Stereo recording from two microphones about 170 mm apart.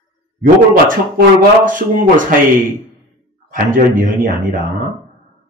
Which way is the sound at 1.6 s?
50° right (ahead or behind).